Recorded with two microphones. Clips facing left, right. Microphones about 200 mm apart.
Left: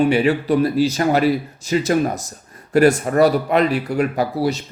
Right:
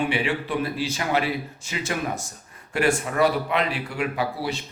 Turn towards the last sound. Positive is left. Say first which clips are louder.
# left 7 dB
turn(degrees=40)  # may be behind; listen again after turning